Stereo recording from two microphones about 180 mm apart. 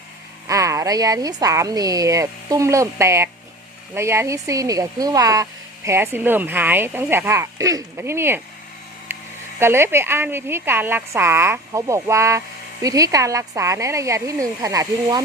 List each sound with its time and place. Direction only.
0.4 s speech: 20° right (ahead or behind)
9.1 s a sound: 10° right (ahead or behind)
9.6 s speech: 15° right (ahead or behind)